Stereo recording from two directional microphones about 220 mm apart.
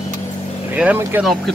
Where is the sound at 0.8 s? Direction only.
5° right (ahead or behind).